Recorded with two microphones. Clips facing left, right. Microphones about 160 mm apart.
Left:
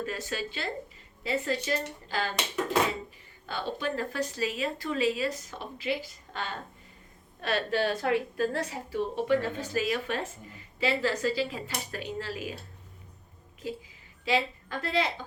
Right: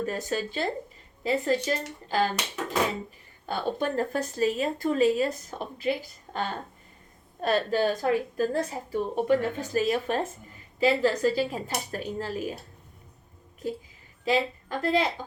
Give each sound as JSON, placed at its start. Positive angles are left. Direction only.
{"t": 0.0, "sound": "speech", "side_deg": -45}
{"t": 3.5, "sound": "speech", "side_deg": -45}
{"t": 14.3, "sound": "a woman's voice", "side_deg": -45}